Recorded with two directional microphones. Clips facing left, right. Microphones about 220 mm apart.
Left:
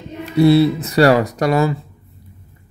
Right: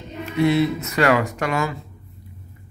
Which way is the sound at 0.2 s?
35° left (ahead or behind).